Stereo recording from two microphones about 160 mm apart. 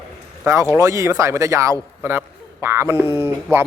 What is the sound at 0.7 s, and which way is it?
Speech, 15° right (ahead or behind).